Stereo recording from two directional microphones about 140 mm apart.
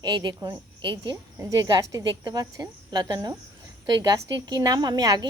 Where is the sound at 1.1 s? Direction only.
20° right (ahead or behind).